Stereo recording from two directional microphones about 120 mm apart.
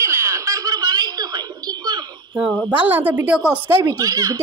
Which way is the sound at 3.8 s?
30° right (ahead or behind).